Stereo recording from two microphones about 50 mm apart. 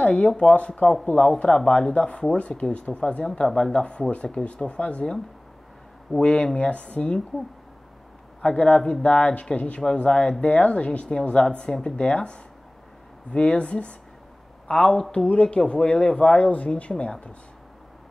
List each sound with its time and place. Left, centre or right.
0.0 s speech: left
0.3 s speech: centre
0.6 s speech: left
1.2 s speech: centre
4.1 s speech: left
6.1 s speech: centre
8.4 s speech: left
14.8 s speech: centre
15.2 s speech: left